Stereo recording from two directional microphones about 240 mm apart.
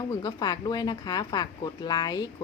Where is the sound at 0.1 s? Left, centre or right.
Centre.